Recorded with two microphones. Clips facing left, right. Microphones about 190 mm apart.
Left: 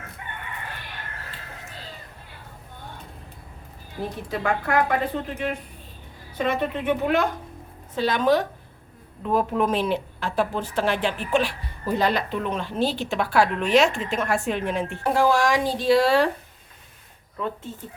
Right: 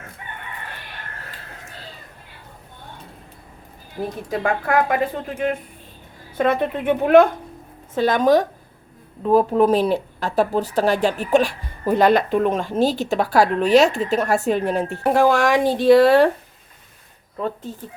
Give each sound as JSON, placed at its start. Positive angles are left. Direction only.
{"t": 4.3, "sound": "a woman's voice", "side_deg": -50}
{"t": 15.0, "sound": "speech", "side_deg": -55}
{"t": 17.3, "sound": "speech", "side_deg": -40}